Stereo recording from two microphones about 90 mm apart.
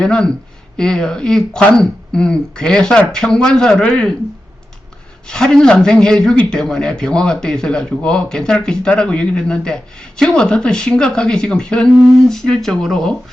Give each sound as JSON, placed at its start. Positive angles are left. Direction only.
{"t": 0.0, "sound": "speech", "side_deg": 10}
{"t": 5.3, "sound": "speech", "side_deg": 5}